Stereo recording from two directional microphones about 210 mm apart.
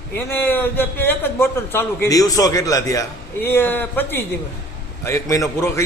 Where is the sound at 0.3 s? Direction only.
10° left (ahead or behind).